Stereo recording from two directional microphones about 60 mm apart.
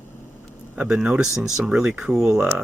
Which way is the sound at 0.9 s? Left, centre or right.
Right.